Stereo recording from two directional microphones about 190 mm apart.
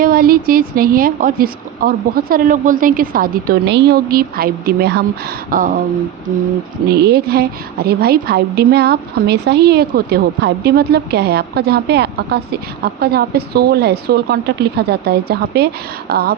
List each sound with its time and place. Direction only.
0.0 s a woman's voice: 50° right (ahead or behind)
5.5 s a woman's voice: 45° right (ahead or behind)
6.9 s a woman's voice: 60° right (ahead or behind)